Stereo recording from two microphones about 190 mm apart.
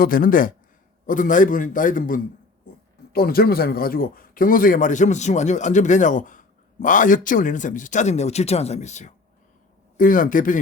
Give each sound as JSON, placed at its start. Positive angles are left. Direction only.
{"t": 0.0, "sound": "a man's voice", "side_deg": 50}